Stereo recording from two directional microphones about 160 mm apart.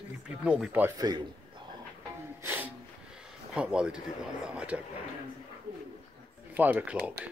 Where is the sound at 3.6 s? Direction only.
5° right (ahead or behind).